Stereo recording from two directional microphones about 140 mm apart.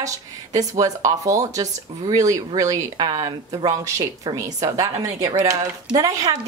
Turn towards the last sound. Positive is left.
turn(degrees=-25)  # may be behind; listen again after turning